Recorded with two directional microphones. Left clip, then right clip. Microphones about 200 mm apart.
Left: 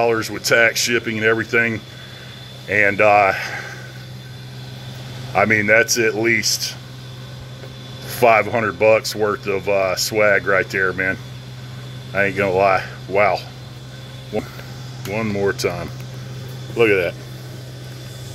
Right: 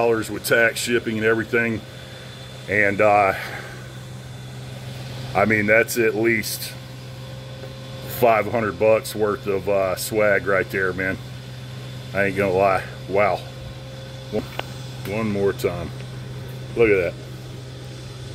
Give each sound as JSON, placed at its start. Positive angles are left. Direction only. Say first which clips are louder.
{"t": 0.0, "sound": "speech", "louder": "left 2 dB", "side_deg": 0}
{"t": 5.3, "sound": "speech", "louder": "left 3 dB", "side_deg": -5}
{"t": 8.2, "sound": "speech", "louder": "left 4 dB", "side_deg": 0}
{"t": 15.0, "sound": "speech", "louder": "left 2 dB", "side_deg": 0}